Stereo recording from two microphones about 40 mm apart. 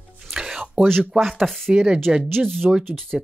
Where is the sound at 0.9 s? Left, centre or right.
Centre.